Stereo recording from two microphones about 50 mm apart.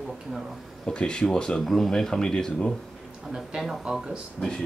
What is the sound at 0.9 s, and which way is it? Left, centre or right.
Speech, centre.